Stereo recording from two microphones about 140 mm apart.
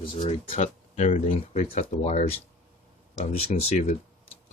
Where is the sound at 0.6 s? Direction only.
55° left (ahead or behind).